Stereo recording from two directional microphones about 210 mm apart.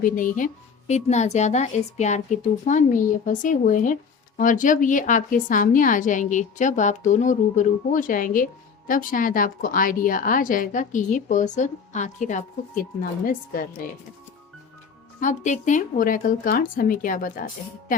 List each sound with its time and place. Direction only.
0.0 s a woman's voice: 40° left (ahead or behind)
15.2 s a woman's voice: 35° left (ahead or behind)